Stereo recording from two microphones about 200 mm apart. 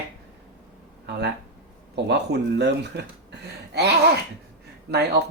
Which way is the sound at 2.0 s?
60° right (ahead or behind).